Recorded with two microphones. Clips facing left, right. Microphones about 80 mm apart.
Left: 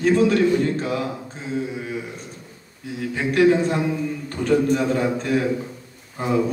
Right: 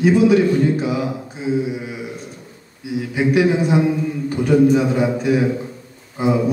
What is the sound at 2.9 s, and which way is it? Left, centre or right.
A man's voice, centre.